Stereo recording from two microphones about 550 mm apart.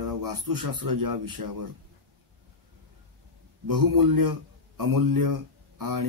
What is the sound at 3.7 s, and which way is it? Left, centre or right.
A man's voice, right.